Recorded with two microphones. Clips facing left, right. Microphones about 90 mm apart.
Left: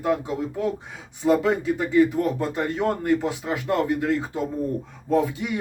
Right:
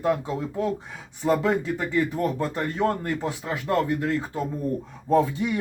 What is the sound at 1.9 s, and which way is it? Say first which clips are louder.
Speech: left 6 dB; 20° left (ahead or behind).